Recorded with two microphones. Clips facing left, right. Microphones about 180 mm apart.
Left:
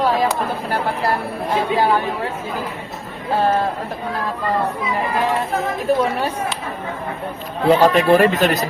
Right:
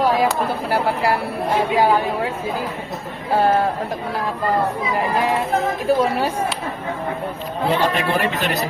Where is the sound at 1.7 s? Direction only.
10° right (ahead or behind).